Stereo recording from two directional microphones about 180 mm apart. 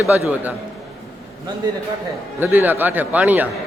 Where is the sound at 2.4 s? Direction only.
10° right (ahead or behind).